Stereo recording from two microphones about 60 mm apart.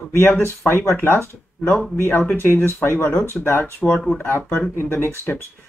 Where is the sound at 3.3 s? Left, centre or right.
Left.